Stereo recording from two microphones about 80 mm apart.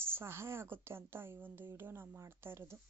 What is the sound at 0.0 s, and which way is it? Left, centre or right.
A woman's voice, right.